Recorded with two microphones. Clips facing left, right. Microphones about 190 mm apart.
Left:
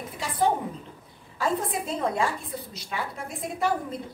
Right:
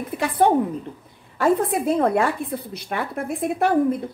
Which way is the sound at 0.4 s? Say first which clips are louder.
Right 6 dB; 60° right (ahead or behind).